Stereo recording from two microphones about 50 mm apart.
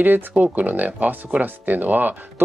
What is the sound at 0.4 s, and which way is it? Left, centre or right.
Speech, right.